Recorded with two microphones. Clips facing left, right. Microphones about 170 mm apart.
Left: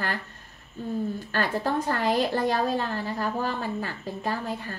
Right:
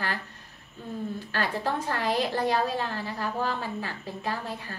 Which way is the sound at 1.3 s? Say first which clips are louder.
Left 3 dB; 45° left (ahead or behind).